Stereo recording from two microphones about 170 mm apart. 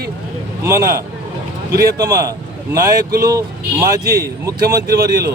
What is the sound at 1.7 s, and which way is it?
Speech, 75° right (ahead or behind).